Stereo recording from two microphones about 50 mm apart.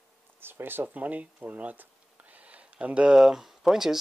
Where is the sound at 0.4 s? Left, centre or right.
Right.